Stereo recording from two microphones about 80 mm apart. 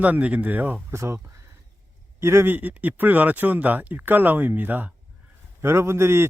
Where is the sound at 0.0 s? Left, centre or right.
Centre.